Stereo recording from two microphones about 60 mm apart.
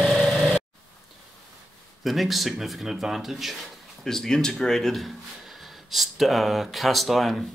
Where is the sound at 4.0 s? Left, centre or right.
Centre.